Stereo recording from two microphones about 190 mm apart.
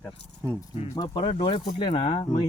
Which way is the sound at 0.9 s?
25° left (ahead or behind).